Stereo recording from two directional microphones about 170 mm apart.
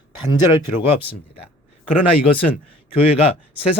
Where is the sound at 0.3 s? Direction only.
30° left (ahead or behind).